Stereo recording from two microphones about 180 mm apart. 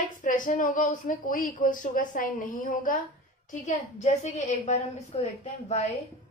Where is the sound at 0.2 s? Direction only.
45° left (ahead or behind).